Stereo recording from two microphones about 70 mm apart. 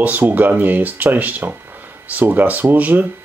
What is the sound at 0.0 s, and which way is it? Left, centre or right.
Speech, right.